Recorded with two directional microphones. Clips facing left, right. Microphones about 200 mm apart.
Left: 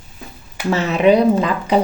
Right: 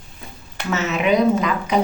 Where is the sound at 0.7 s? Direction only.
30° left (ahead or behind).